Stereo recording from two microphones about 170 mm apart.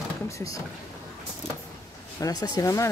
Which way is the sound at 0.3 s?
20° left (ahead or behind).